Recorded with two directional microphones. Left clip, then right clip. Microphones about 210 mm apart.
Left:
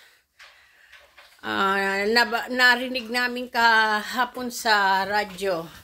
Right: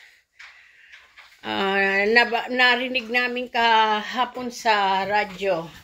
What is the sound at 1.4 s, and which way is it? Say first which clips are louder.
Speech: right 1 dB; 10° left (ahead or behind).